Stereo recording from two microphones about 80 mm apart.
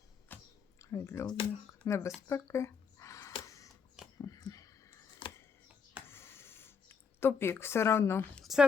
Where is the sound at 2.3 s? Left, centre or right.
Left.